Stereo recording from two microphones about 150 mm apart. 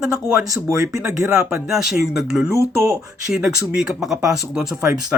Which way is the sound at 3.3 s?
5° right (ahead or behind).